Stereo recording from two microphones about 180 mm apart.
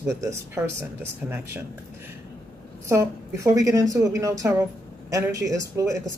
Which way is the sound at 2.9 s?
15° right (ahead or behind).